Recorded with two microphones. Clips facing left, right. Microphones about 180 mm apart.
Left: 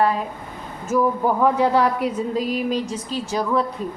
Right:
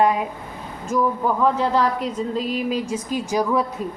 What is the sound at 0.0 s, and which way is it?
Speech, 15° right (ahead or behind).